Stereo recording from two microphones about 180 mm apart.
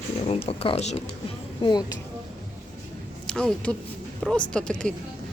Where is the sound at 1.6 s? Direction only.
25° left (ahead or behind).